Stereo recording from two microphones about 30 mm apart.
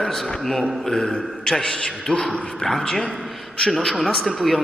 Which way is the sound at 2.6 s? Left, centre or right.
Centre.